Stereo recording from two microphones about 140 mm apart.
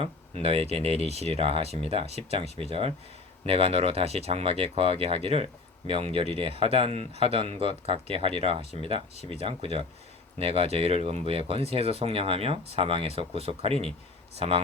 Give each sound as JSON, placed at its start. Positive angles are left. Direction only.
{"t": 0.7, "sound": "speech", "side_deg": -45}